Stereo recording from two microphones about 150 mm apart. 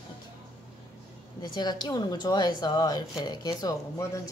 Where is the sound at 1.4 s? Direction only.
30° left (ahead or behind).